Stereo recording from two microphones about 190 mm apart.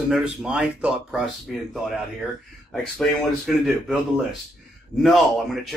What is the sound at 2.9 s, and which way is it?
Speech, centre (ahead or behind).